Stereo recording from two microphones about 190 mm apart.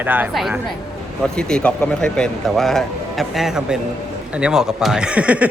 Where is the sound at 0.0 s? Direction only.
10° right (ahead or behind).